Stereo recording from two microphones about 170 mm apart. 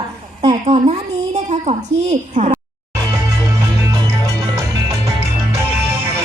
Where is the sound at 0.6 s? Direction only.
40° right (ahead or behind).